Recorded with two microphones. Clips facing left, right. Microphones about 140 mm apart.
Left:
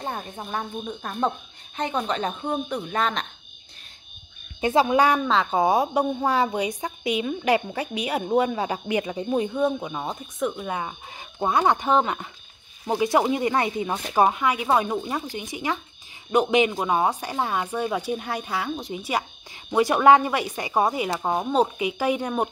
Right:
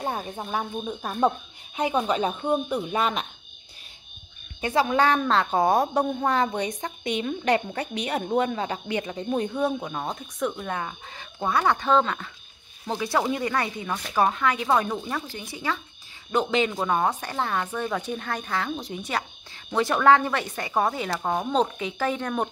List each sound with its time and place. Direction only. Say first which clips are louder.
0.0 s a woman's voice: right 2 dB; 10° right (ahead or behind)
4.6 s a woman's voice: left 3 dB; 20° left (ahead or behind)
5.3 s a woman's voice: left 1 dB; centre (ahead or behind)